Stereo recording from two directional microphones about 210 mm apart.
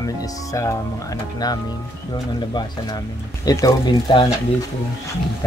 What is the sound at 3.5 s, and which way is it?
Speech, 15° left (ahead or behind).